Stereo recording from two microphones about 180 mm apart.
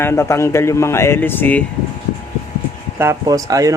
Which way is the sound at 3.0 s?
15° right (ahead or behind).